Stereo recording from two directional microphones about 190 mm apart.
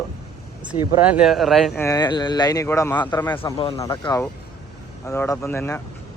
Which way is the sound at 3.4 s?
30° left (ahead or behind).